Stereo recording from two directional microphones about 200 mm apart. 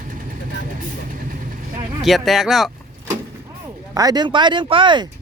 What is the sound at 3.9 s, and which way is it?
Speech, 20° right (ahead or behind).